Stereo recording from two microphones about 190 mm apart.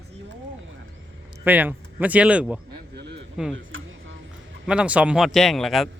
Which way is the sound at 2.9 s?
65° right (ahead or behind).